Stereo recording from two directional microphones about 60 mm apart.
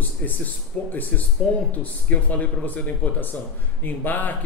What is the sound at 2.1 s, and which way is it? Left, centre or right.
A man's voice, left.